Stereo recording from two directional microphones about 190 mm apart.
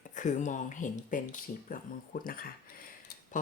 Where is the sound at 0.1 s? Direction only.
40° left (ahead or behind).